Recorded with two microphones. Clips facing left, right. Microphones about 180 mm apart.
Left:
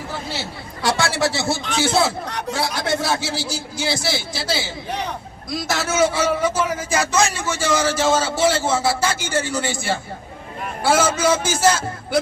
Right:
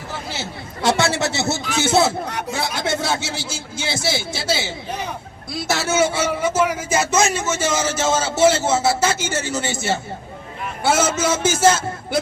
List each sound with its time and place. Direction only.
0.3 s a man's voice: 20° right (ahead or behind)
2.2 s speech: 5° right (ahead or behind)
2.6 s a man's voice: 25° right (ahead or behind)
11.2 s a man's voice: 25° right (ahead or behind)